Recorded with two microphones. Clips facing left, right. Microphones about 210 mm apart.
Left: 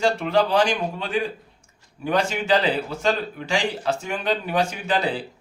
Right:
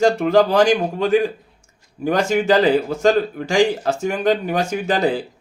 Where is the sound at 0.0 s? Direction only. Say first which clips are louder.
Right 6 dB; 45° right (ahead or behind).